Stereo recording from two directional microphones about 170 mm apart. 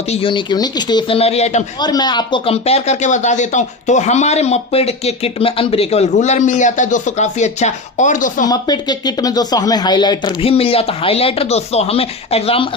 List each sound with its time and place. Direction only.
0.1 s speech: 30° left (ahead or behind)
1.8 s speech: 25° left (ahead or behind); by 8.4 s 50° left (ahead or behind)
8.4 s speech: 25° left (ahead or behind)